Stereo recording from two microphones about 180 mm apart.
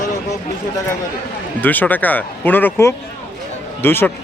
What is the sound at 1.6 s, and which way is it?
A man's voice, 10° left (ahead or behind).